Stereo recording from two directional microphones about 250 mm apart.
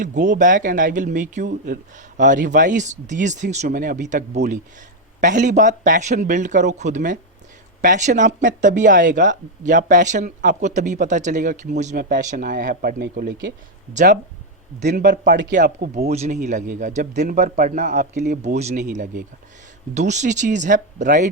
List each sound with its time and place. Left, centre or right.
0.0 s speech: right
16.0 s a man's voice: right